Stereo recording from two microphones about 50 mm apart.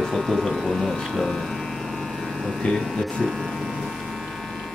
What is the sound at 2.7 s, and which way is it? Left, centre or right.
Speech, centre.